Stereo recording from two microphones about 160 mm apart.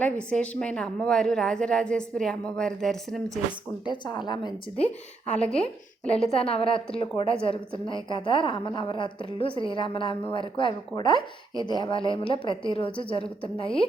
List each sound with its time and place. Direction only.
0.0 s a woman's voice: 5° left (ahead or behind)
3.8 s a woman's voice: 30° left (ahead or behind)
5.4 s a woman's voice: 5° left (ahead or behind)
6.3 s a woman's voice: 35° left (ahead or behind)